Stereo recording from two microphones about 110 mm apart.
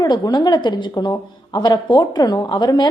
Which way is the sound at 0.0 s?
35° left (ahead or behind).